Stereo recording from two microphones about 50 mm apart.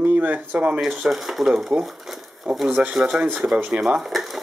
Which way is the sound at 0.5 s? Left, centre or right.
Right.